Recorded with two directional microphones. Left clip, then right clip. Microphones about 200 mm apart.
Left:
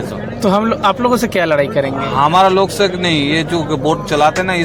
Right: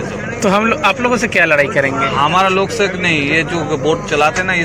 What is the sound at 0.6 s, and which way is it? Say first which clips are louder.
Speech: even; 20° left (ahead or behind).